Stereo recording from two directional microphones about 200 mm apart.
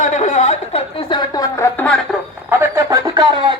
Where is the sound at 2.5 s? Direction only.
15° right (ahead or behind).